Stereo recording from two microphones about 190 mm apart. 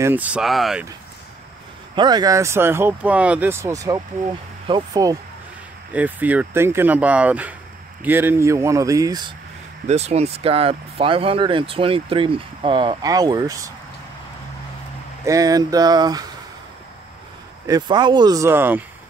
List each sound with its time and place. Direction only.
0.0 s speech: 10° right (ahead or behind)
2.0 s speech: 20° right (ahead or behind)
5.9 s speech: 10° right (ahead or behind)
9.8 s speech: 35° right (ahead or behind); by 13.7 s 20° right (ahead or behind)
15.2 s speech: 20° right (ahead or behind)
17.6 s speech: 20° right (ahead or behind)